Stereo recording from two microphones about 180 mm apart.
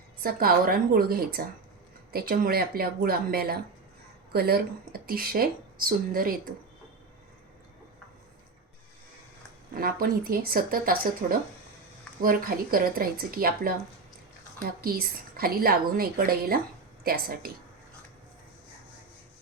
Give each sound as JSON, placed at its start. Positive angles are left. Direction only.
{"t": 0.2, "sound": "speech", "side_deg": -55}
{"t": 9.7, "sound": "speech", "side_deg": -55}